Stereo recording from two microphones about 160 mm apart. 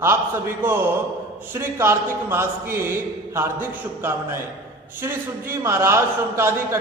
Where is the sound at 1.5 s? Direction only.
15° right (ahead or behind).